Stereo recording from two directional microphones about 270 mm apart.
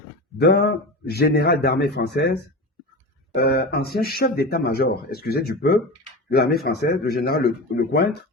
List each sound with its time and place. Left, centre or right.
0.3 s speech: left